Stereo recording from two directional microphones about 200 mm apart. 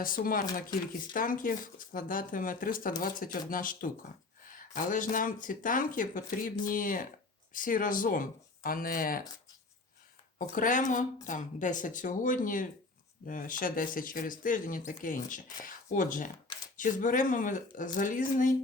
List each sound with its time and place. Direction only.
0.0 s speech: 45° left (ahead or behind)
10.3 s speech: 40° left (ahead or behind)